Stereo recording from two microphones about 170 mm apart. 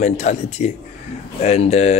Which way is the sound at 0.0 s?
45° left (ahead or behind).